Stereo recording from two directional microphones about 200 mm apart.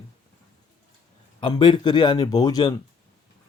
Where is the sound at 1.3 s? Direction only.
25° left (ahead or behind).